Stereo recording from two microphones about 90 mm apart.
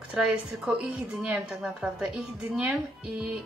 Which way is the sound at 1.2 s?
10° right (ahead or behind).